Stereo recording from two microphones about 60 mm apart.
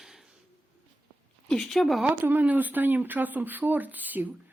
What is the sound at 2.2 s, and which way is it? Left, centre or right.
A woman's voice, right.